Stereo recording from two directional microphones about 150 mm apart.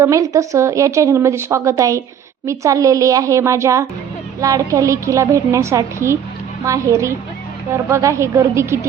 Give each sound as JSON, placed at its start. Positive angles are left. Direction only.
{"t": 0.0, "sound": "a woman's voice", "side_deg": -20}